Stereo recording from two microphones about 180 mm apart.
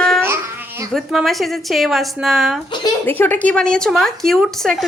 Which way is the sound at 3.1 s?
10° left (ahead or behind).